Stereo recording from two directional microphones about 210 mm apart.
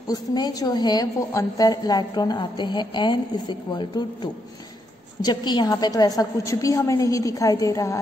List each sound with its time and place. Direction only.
0.1 s a woman's voice: 20° left (ahead or behind)